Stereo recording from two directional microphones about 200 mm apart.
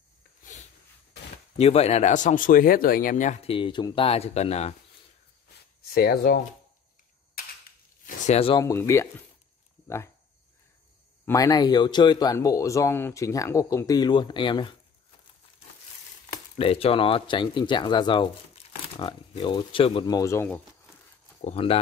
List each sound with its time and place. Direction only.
0.4 s a sound: 40° left (ahead or behind)
1.6 s speech: 30° left (ahead or behind)
3.5 s speech: 25° left (ahead or behind)
5.9 s speech: 50° left (ahead or behind)
8.1 s speech: 30° left (ahead or behind)
8.6 s speech: 15° left (ahead or behind)
11.2 s speech: 15° left (ahead or behind)
16.5 s speech: 30° left (ahead or behind); by 20.6 s 10° left (ahead or behind)
21.4 s speech: 30° left (ahead or behind)